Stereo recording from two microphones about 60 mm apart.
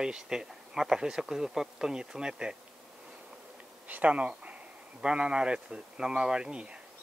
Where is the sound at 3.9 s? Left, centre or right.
Right.